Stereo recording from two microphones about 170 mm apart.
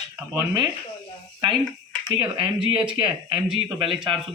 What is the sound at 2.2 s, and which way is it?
Speech, 30° right (ahead or behind).